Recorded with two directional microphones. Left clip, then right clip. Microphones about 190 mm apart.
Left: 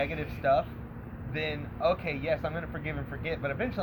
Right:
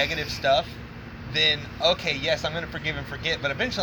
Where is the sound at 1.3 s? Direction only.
20° right (ahead or behind).